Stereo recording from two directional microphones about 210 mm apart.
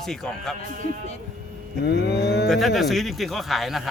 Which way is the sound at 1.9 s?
50° left (ahead or behind).